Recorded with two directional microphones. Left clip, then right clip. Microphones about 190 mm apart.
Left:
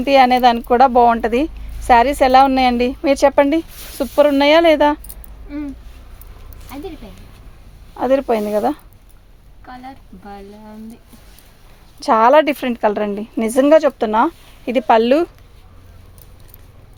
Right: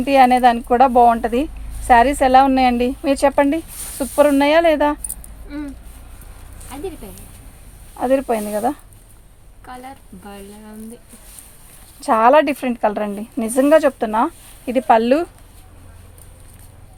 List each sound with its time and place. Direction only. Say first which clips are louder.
0.0 s speech: left 1 dB; 50° left (ahead or behind)
6.7 s speech: right 1 dB; 30° right (ahead or behind)
7.9 s speech: left 2 dB; 50° left (ahead or behind)
9.6 s a woman's voice: even; 30° right (ahead or behind)
11.9 s speech: left 1 dB; 45° left (ahead or behind)